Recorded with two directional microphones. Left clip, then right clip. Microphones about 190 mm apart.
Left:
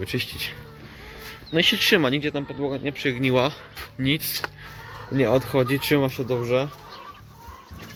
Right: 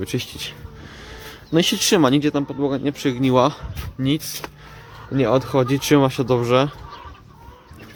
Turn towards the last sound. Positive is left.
turn(degrees=-25)  # may be behind; listen again after turning